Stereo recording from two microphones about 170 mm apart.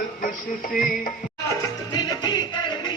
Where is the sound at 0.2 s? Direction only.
55° left (ahead or behind).